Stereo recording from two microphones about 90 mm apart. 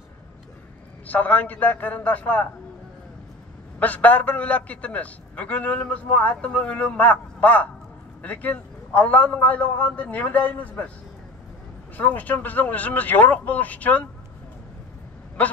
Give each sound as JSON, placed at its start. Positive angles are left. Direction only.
{"t": 1.0, "sound": "a man's voice", "side_deg": 20}
{"t": 3.8, "sound": "a man's voice", "side_deg": 15}
{"t": 12.0, "sound": "a man's voice", "side_deg": 20}
{"t": 15.4, "sound": "speech", "side_deg": 15}